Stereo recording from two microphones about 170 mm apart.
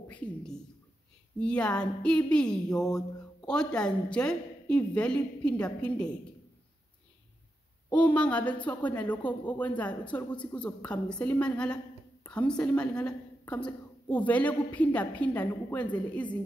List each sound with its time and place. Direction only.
0.1 s a woman's voice: 5° left (ahead or behind)
7.9 s a woman's voice: 10° left (ahead or behind)